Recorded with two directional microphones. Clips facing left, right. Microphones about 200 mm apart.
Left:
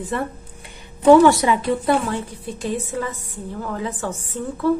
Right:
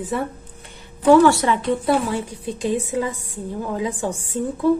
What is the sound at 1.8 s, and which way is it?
A woman's voice, 10° right (ahead or behind).